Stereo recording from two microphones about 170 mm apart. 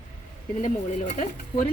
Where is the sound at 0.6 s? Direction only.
45° left (ahead or behind).